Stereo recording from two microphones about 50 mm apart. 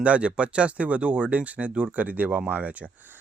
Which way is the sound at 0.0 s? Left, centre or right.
Right.